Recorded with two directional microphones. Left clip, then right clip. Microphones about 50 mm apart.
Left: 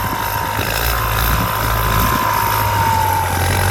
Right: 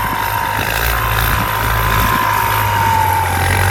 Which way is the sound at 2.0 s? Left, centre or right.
Left.